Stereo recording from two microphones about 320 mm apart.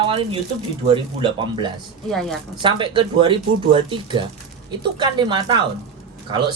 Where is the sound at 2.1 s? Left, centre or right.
Centre.